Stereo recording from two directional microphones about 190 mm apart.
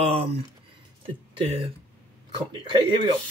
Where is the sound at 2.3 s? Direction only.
25° right (ahead or behind).